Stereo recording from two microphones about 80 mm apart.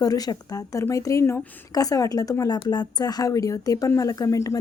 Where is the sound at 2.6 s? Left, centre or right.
Left.